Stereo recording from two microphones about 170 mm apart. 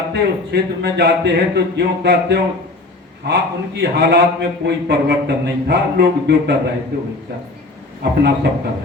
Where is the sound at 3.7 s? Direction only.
75° right (ahead or behind).